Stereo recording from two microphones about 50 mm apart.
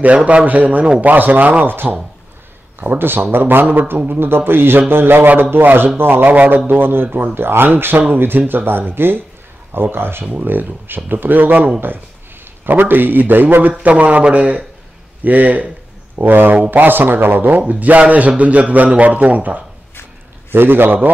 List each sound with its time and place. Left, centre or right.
0.0 s a man's voice: right
1.1 s a man's voice: right
3.0 s a man's voice: right
6.3 s a man's voice: right
6.7 s a man's voice: right
20.5 s speech: right